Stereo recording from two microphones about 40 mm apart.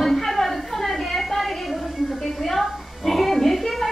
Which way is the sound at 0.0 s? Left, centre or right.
Centre.